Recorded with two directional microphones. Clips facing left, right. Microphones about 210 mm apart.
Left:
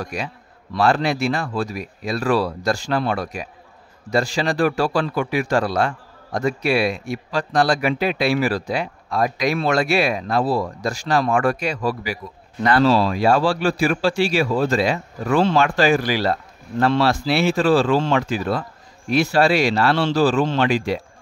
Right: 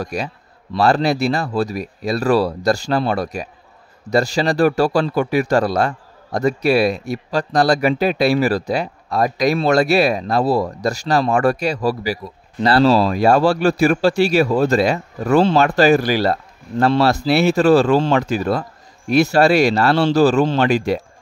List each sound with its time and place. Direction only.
0.0 s speech: 40° right (ahead or behind)